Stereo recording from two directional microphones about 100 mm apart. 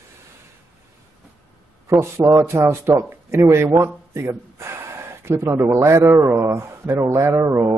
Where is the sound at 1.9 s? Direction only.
30° right (ahead or behind).